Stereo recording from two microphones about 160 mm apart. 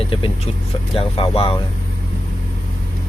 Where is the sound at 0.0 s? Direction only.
35° left (ahead or behind).